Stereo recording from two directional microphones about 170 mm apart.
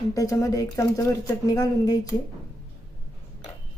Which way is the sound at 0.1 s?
20° left (ahead or behind).